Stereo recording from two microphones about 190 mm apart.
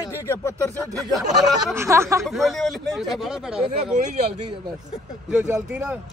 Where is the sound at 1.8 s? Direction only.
15° right (ahead or behind).